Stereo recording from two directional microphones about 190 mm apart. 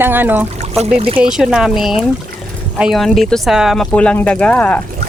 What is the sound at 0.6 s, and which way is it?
Trickle, 35° right (ahead or behind).